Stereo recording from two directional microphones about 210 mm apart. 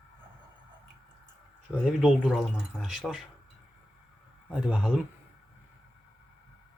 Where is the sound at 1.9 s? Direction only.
5° right (ahead or behind).